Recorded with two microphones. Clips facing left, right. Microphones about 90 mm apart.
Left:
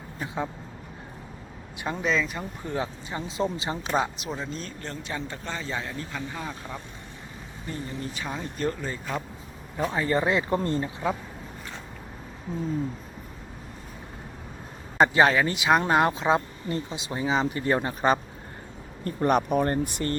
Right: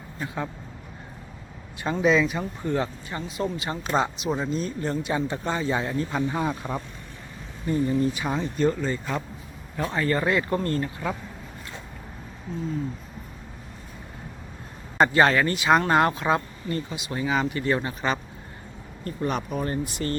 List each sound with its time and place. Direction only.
0.2 s a man's voice: 10° left (ahead or behind)
1.9 s speech: 5° right (ahead or behind)
2.7 s speech: 15° left (ahead or behind)
3.7 s a man's voice: 10° left (ahead or behind)
4.4 s a man's voice: 5° right (ahead or behind)
8.4 s a man's voice: centre (ahead or behind); by 11.2 s 20° left (ahead or behind)
14.9 s a man's voice: 10° left (ahead or behind)
17.6 s speech: 35° left (ahead or behind)
19.0 s speech: 50° left (ahead or behind)